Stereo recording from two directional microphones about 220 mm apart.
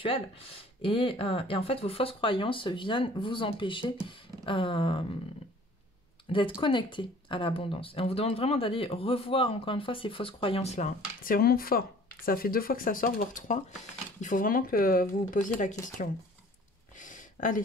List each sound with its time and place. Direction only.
0.8 s speech: 25° left (ahead or behind)
6.2 s speech: 25° left (ahead or behind)
17.0 s a sound: 35° left (ahead or behind)